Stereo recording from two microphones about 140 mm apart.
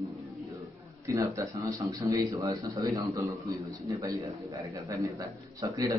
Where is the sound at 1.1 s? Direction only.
25° right (ahead or behind).